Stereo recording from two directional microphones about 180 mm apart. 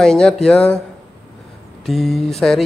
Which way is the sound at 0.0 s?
5° left (ahead or behind).